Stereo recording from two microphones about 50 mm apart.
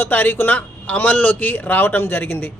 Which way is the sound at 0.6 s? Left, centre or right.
Left.